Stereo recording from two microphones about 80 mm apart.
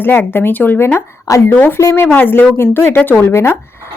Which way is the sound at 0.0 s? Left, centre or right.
Left.